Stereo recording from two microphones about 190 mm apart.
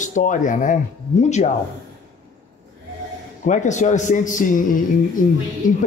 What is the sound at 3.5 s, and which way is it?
A man's voice, 40° left (ahead or behind).